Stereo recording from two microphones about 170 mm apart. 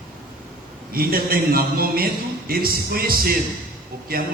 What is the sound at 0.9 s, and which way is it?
A man's voice, 60° right (ahead or behind).